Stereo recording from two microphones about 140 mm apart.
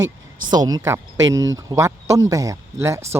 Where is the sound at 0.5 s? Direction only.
25° right (ahead or behind).